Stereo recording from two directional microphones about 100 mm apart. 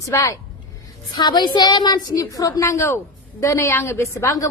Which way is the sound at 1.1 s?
45° left (ahead or behind).